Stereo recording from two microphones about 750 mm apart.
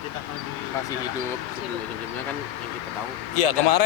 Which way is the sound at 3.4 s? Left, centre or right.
Left.